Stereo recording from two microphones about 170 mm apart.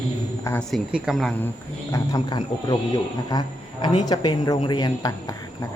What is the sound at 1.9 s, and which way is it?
Speech, 20° left (ahead or behind).